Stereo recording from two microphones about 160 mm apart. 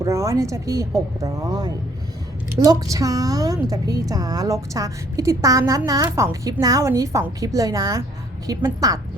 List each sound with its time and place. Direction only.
0.0 s a woman's voice: 15° right (ahead or behind)